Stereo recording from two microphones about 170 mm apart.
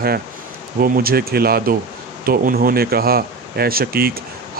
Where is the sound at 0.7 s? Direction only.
60° right (ahead or behind).